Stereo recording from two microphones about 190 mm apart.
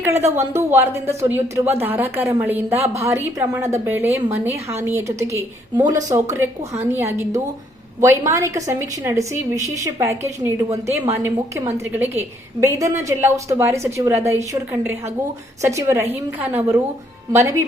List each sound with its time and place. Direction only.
0.3 s a woman's voice: 15° right (ahead or behind)